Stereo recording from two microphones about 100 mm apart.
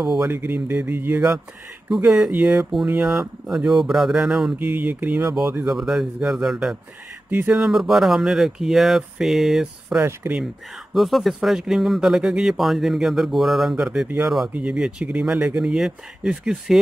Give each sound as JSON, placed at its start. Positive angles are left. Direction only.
{"t": 0.0, "sound": "speech", "side_deg": -5}
{"t": 0.3, "sound": "speech", "side_deg": -15}
{"t": 2.0, "sound": "speech", "side_deg": -5}
{"t": 4.6, "sound": "speech", "side_deg": -15}
{"t": 5.7, "sound": "speech", "side_deg": -5}
{"t": 7.2, "sound": "speech", "side_deg": -20}
{"t": 7.5, "sound": "speech", "side_deg": -5}